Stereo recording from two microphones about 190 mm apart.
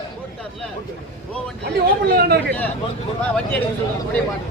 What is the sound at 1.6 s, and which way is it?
Speech, 55° right (ahead or behind).